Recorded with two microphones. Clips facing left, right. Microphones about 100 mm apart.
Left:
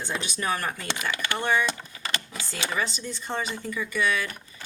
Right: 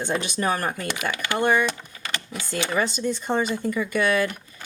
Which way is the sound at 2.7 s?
45° right (ahead or behind).